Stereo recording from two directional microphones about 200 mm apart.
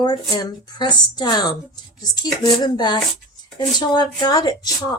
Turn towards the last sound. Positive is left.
turn(degrees=20)  # may be behind; listen again after turning